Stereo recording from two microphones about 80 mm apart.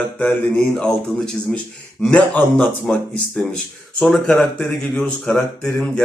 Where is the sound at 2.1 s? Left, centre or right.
Centre.